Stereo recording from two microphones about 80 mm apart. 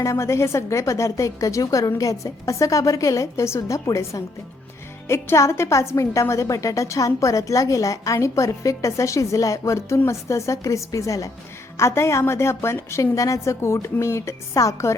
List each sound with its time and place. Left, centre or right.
0.0 s a woman's voice: left